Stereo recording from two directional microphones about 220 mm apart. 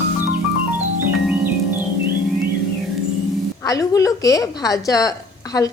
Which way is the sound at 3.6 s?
15° left (ahead or behind).